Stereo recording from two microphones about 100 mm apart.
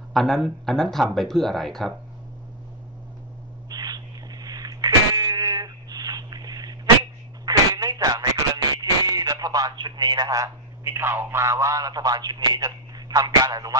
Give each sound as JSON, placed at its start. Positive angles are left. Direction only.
{"t": 0.1, "sound": "speech", "side_deg": 0}
{"t": 3.7, "sound": "a sound", "side_deg": -40}
{"t": 8.7, "sound": "speech", "side_deg": -40}